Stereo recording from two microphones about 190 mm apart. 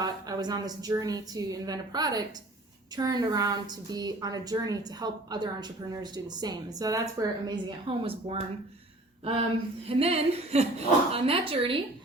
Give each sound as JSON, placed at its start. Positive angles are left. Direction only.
{"t": 0.0, "sound": "a woman's voice", "side_deg": -20}
{"t": 9.9, "sound": "a woman's voice", "side_deg": -30}